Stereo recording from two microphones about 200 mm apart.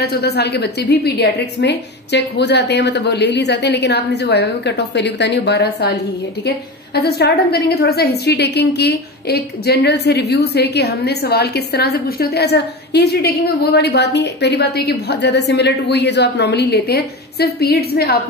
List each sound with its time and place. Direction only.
0.0 s a woman's voice: 55° left (ahead or behind)
7.0 s a woman's voice: 55° left (ahead or behind)